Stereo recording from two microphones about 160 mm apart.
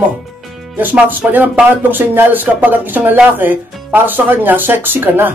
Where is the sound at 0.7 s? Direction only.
10° right (ahead or behind).